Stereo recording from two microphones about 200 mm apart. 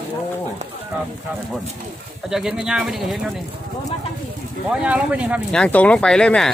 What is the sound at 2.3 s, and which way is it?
Speech, centre (ahead or behind).